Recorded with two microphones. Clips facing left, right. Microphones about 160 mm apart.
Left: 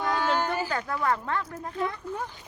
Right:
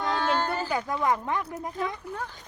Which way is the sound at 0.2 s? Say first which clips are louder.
Even; 10° left (ahead or behind).